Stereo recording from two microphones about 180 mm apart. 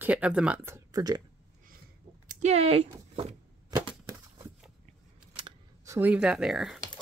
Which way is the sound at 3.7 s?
25° right (ahead or behind).